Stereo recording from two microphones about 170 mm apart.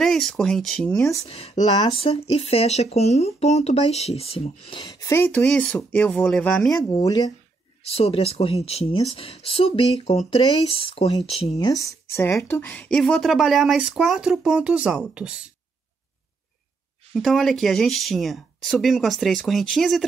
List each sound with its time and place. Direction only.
0.0 s speech: centre (ahead or behind)
1.3 s speech: 35° left (ahead or behind); by 6.7 s 5° left (ahead or behind)
6.9 s speech: 20° left (ahead or behind)
7.8 s speech: 35° left (ahead or behind)
11.5 s speech: 20° left (ahead or behind); by 15.5 s 5° right (ahead or behind)
17.1 s speech: centre (ahead or behind)